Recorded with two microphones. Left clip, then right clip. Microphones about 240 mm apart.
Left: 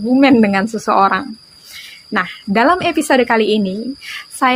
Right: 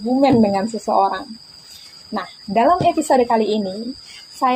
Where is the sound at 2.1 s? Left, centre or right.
Left.